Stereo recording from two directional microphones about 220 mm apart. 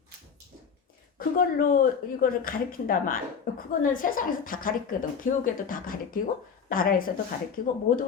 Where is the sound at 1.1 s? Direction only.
40° left (ahead or behind).